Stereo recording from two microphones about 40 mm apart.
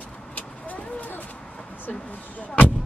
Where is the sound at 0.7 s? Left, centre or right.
Left.